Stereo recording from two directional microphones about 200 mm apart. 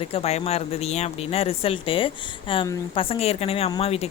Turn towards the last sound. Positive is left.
turn(degrees=30)  # may be behind; listen again after turning